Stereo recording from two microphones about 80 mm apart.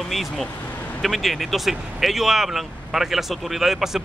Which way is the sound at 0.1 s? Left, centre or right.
Centre.